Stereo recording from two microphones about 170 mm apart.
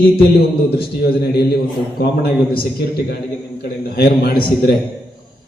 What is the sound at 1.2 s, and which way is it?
Speech, 70° left (ahead or behind).